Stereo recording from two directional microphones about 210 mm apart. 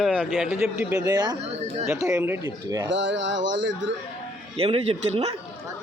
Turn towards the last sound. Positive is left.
turn(degrees=-30)  # may be behind; listen again after turning